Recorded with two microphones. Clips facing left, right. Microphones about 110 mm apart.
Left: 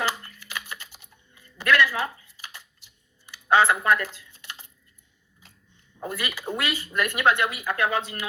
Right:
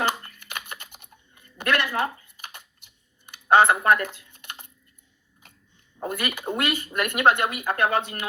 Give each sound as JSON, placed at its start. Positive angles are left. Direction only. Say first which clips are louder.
{"t": 0.3, "sound": "typing", "louder": "even", "side_deg": -55}
{"t": 3.8, "sound": "speech", "louder": "right 2 dB", "side_deg": -50}
{"t": 6.1, "sound": "speech", "louder": "right 3 dB", "side_deg": -50}
{"t": 6.3, "sound": "speech", "louder": "right 2 dB", "side_deg": -20}
{"t": 6.6, "sound": "speech", "louder": "right 1 dB", "side_deg": -55}